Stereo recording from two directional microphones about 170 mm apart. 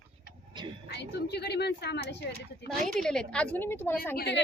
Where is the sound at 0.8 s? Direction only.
80° left.